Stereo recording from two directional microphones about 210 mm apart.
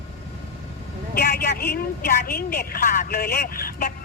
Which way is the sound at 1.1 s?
45° left (ahead or behind).